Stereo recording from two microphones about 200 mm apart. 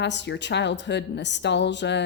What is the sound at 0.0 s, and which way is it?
Speech, 60° left (ahead or behind).